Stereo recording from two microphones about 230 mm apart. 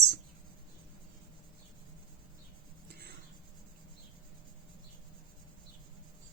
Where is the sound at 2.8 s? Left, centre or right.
Right.